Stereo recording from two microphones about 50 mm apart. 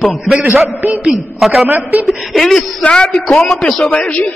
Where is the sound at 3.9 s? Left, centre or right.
Left.